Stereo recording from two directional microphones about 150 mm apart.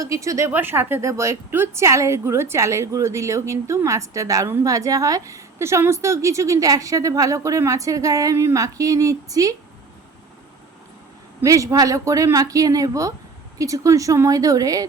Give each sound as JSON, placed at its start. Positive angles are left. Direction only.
{"t": 0.0, "sound": "a woman's voice", "side_deg": -20}
{"t": 11.4, "sound": "a woman's voice", "side_deg": -20}